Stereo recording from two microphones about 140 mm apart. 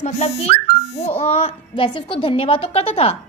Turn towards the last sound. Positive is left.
turn(degrees=45)  # may be behind; listen again after turning